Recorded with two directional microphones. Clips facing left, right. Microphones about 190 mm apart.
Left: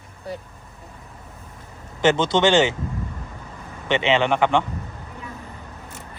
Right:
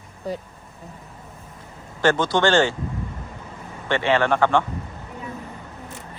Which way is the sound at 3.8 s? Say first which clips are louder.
Even; 20° left (ahead or behind).